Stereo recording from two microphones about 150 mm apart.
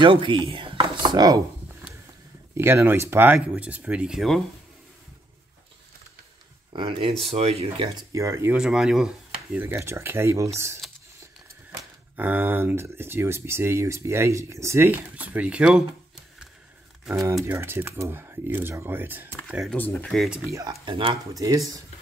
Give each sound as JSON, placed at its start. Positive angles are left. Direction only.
{"t": 0.0, "sound": "speech", "side_deg": -35}
{"t": 2.5, "sound": "speech", "side_deg": -15}
{"t": 6.7, "sound": "speech", "side_deg": -35}
{"t": 8.1, "sound": "speech", "side_deg": -20}
{"t": 8.5, "sound": "speech", "side_deg": -5}
{"t": 17.5, "sound": "speech", "side_deg": -15}
{"t": 19.4, "sound": "speech", "side_deg": 0}
{"t": 19.8, "sound": "speech", "side_deg": 10}
{"t": 20.5, "sound": "speech", "side_deg": -30}
{"t": 21.3, "sound": "speech", "side_deg": -20}